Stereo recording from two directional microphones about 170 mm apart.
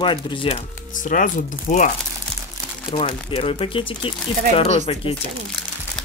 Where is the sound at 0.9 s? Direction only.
50° left (ahead or behind).